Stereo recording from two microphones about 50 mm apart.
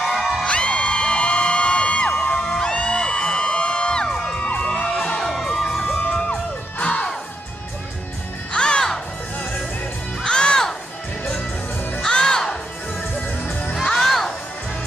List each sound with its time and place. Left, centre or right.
0.0 s music: centre
0.5 s music: left
5.2 s music: centre
6.0 s music: centre
8.5 s music: centre
10.2 s music: centre
12.0 s crowd: centre
13.4 s music: left
13.9 s music: centre